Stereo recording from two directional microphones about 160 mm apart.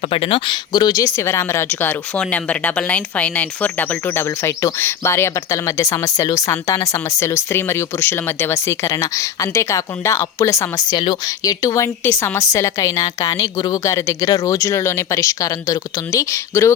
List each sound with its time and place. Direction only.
0.0 s speech: 35° left (ahead or behind); by 16.7 s 15° left (ahead or behind)